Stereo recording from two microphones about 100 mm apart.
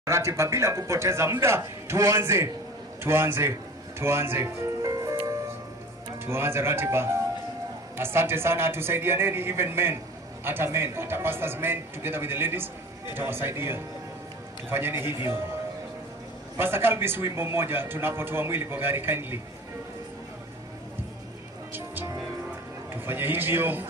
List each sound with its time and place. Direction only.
0.0 s a man's voice: 30° right (ahead or behind)
4.8 s music: 35° right (ahead or behind)
6.2 s a man's voice: 25° right (ahead or behind)
15.0 s a man's voice: 50° left (ahead or behind)
16.5 s a man's voice: 25° right (ahead or behind)
23.0 s a man's voice: 20° right (ahead or behind)